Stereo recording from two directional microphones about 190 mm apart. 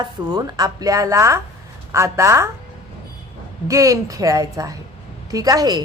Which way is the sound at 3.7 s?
15° right (ahead or behind).